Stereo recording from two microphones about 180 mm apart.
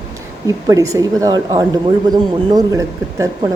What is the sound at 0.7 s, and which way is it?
Speech, 20° right (ahead or behind).